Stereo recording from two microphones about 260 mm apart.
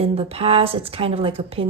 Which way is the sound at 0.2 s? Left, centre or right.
Right.